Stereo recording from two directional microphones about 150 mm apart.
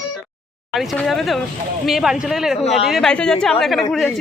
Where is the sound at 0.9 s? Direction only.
5° left (ahead or behind).